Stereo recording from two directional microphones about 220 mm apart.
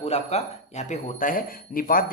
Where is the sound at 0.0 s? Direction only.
30° left (ahead or behind).